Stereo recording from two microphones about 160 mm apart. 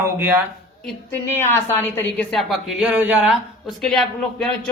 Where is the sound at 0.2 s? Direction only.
10° right (ahead or behind).